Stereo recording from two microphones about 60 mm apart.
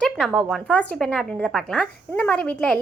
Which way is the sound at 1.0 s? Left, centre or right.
Centre.